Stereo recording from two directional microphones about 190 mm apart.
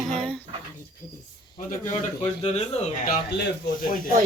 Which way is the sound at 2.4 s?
35° left (ahead or behind).